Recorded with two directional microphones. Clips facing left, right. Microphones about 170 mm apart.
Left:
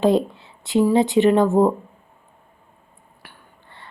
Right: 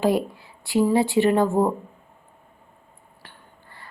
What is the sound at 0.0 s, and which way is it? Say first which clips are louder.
Speech: left 4 dB; 25° left (ahead or behind).